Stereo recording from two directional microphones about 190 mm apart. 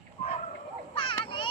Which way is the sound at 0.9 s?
25° left (ahead or behind).